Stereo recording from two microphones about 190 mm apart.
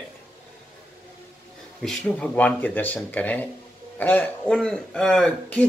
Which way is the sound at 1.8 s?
5° left (ahead or behind).